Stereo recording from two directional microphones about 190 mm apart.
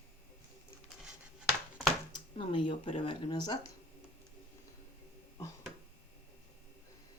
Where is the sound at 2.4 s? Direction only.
25° left (ahead or behind).